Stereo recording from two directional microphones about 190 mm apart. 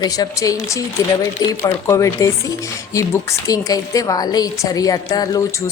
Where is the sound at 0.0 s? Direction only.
20° left (ahead or behind).